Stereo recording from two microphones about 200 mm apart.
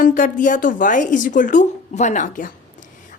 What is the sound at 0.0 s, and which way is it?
A woman's voice, 40° left (ahead or behind).